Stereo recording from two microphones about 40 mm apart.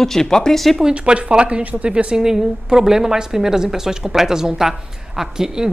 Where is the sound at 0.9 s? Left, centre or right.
Right.